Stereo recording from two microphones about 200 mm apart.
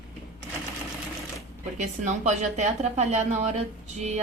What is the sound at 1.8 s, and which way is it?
Speech, 35° right (ahead or behind).